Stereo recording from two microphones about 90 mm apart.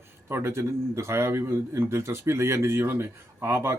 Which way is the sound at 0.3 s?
25° right (ahead or behind).